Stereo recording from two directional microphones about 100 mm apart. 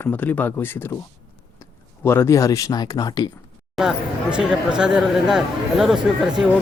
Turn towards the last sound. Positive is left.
turn(degrees=-10)  # may be behind; listen again after turning